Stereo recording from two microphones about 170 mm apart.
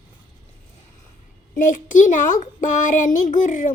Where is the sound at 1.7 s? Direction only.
50° left (ahead or behind).